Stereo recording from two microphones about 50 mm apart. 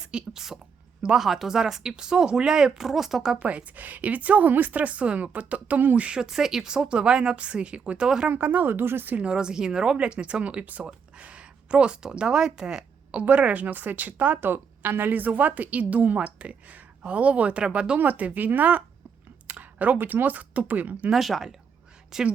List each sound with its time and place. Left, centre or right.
0.0 s a sound: centre
1.0 s speech: centre
3.4 s speech: right
6.2 s speech: centre
8.3 s speech: right
9.1 s speech: right
13.1 s a woman's voice: right
14.5 s a woman's voice: right
21.1 s speech: centre